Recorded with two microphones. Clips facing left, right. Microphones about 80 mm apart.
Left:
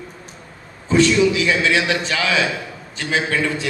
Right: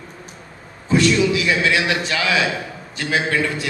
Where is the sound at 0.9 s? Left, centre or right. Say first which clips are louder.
Left 2 dB; left.